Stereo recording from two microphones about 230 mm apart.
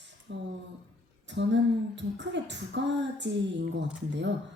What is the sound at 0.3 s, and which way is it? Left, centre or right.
Speech, right.